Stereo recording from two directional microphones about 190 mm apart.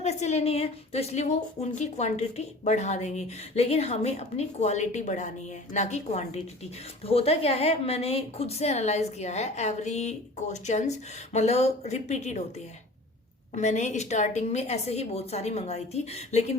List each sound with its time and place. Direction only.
0.0 s a woman's voice: 35° left (ahead or behind)
13.6 s a woman's voice: 35° left (ahead or behind)